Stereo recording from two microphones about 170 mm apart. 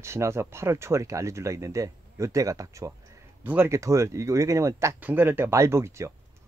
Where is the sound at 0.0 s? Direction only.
15° right (ahead or behind).